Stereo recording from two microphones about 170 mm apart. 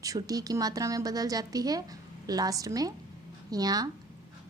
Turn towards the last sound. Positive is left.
turn(degrees=-20)  # may be behind; listen again after turning